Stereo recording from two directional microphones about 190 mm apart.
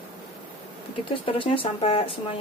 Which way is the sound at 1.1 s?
30° left (ahead or behind).